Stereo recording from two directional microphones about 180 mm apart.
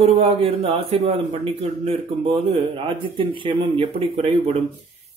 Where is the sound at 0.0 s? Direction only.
30° right (ahead or behind).